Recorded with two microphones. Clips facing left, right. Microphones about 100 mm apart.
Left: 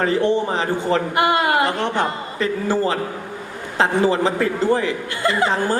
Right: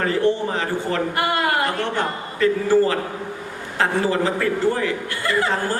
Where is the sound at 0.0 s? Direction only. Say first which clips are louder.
Left 2 dB; 20° left (ahead or behind).